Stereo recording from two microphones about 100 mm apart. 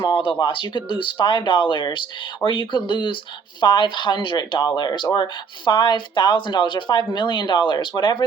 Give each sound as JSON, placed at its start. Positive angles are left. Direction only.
{"t": 0.3, "sound": "speech", "side_deg": 55}